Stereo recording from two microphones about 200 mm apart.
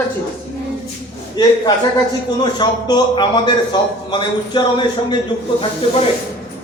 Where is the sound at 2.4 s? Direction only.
20° left (ahead or behind).